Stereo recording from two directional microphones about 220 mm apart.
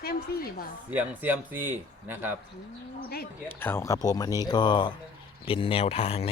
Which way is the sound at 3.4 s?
10° left (ahead or behind).